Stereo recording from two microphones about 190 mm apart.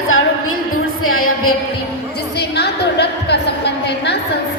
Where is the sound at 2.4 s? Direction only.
60° left (ahead or behind).